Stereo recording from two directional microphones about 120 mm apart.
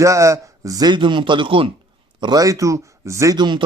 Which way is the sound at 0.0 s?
25° right (ahead or behind).